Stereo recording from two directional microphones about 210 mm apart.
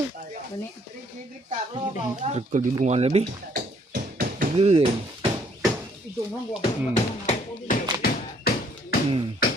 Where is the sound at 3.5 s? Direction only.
45° right (ahead or behind).